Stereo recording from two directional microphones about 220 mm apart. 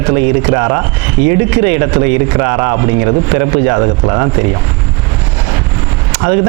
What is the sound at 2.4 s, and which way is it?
A man's voice, 20° right (ahead or behind).